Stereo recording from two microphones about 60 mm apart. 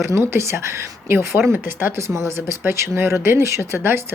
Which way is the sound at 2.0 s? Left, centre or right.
Right.